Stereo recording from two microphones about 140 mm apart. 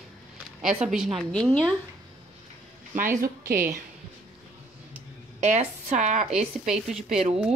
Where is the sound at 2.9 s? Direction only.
75° right (ahead or behind).